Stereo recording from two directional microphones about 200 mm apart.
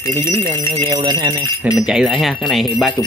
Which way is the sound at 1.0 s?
20° right (ahead or behind).